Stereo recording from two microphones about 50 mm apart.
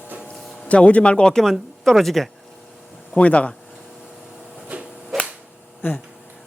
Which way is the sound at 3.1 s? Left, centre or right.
Left.